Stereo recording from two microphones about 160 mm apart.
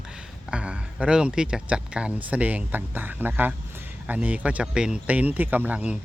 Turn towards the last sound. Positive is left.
turn(degrees=-10)  # may be behind; listen again after turning